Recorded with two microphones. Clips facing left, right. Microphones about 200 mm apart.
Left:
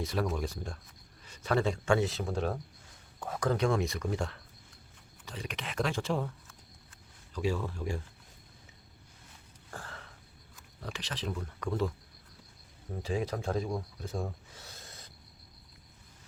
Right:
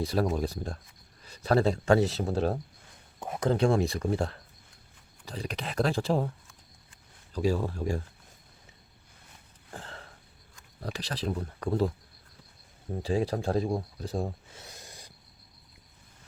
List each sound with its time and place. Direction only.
0.0 s speech: 35° right (ahead or behind)
3.2 s speech: 20° right (ahead or behind)
7.3 s speech: 40° right (ahead or behind)
9.7 s a sound: 25° right (ahead or behind)
10.8 s speech: 35° right (ahead or behind)
13.0 s speech: 30° right (ahead or behind); by 15.1 s 15° right (ahead or behind)